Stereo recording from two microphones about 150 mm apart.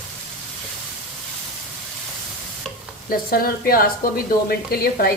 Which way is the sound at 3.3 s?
80° left.